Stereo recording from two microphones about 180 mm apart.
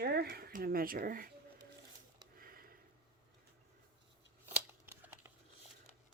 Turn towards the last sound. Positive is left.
turn(degrees=-10)  # may be behind; listen again after turning